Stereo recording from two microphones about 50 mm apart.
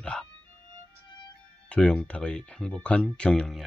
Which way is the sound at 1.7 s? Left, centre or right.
Left.